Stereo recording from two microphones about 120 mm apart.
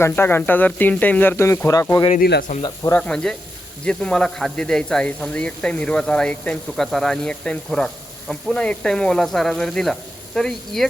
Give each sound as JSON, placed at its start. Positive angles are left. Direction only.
{"t": 0.0, "sound": "speech", "side_deg": 20}
{"t": 3.0, "sound": "speech", "side_deg": 5}